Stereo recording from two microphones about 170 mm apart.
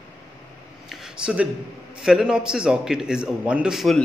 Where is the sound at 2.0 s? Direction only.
5° right (ahead or behind).